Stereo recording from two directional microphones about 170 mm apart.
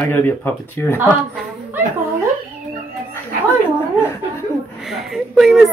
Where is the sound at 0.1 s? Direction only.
10° left (ahead or behind).